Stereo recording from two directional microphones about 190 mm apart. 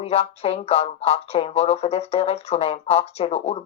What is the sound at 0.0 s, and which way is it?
Speech, 30° left (ahead or behind).